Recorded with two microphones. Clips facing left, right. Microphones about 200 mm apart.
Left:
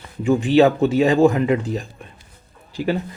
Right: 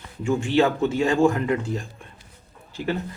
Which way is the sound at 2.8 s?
90° left.